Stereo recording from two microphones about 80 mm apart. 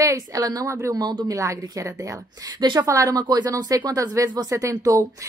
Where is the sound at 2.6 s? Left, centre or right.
Right.